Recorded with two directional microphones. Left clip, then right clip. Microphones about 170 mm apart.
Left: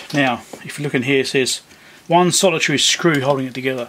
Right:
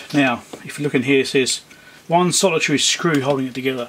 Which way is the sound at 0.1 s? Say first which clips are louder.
Even; 15° left (ahead or behind).